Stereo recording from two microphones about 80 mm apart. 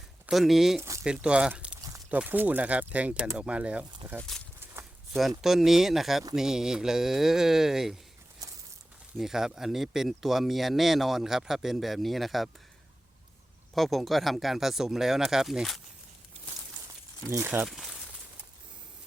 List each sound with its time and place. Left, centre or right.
0.3 s speech: centre
0.8 s a sound: right
1.0 s speech: centre
5.4 s speech: centre
9.1 s speech: centre
13.7 s speech: centre
17.2 s speech: right
17.7 s speech: centre